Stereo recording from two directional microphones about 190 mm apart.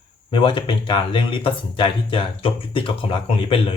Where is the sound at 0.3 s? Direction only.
25° left (ahead or behind).